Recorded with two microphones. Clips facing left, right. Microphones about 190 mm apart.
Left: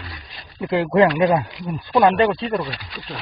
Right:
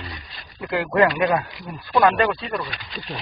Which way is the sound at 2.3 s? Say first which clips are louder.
Left 5 dB; 30° left (ahead or behind).